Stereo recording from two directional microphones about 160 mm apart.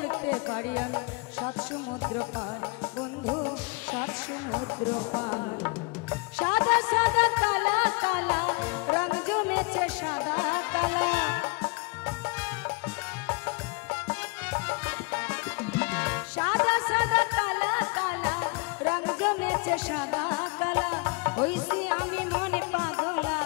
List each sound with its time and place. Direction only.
0.7 s music: 10° left (ahead or behind)
3.3 s music: 10° left (ahead or behind)
4.6 s music: 30° left (ahead or behind)
5.6 s music: 10° left (ahead or behind)
14.5 s music: 10° left (ahead or behind)